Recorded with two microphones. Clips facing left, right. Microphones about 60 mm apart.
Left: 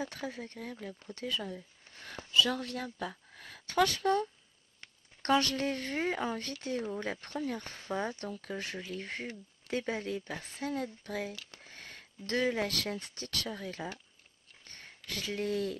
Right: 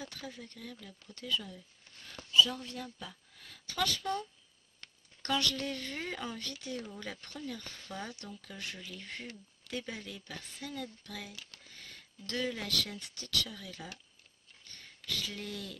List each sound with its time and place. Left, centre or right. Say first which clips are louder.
0.0 s speech: left 6 dB; left
2.4 s a woman's voice: left 5 dB; left
8.2 s speech: left 7 dB; left
10.4 s a woman's voice: left 7 dB; left
10.7 s speech: left 7 dB; left